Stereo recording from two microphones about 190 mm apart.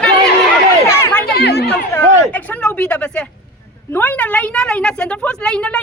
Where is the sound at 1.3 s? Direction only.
60° left (ahead or behind).